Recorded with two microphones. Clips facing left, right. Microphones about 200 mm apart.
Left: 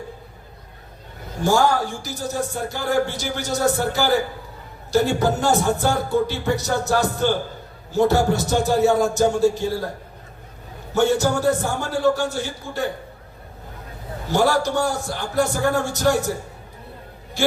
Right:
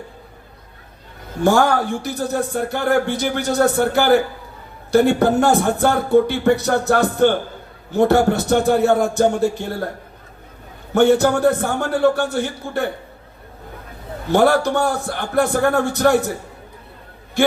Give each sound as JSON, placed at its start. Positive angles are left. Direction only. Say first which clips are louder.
{"t": 1.5, "sound": "speech", "louder": "right 3 dB", "side_deg": -60}
{"t": 10.9, "sound": "speech", "louder": "right 5 dB", "side_deg": -60}
{"t": 14.3, "sound": "speech", "louder": "right 4 dB", "side_deg": -60}
{"t": 17.4, "sound": "a man's voice", "louder": "right 4 dB", "side_deg": -55}